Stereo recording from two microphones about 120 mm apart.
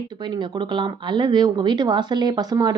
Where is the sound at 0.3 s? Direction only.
40° right (ahead or behind).